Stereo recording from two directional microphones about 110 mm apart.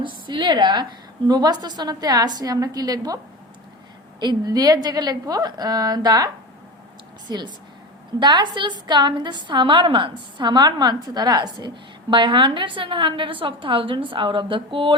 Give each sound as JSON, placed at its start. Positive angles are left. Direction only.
{"t": 0.0, "sound": "a woman's voice", "side_deg": -45}
{"t": 4.2, "sound": "a woman's voice", "side_deg": -40}